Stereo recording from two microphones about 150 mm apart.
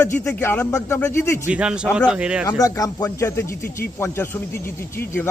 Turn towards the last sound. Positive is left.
turn(degrees=15)  # may be behind; listen again after turning